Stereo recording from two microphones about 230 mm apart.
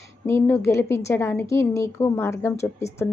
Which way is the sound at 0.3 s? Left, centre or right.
Centre.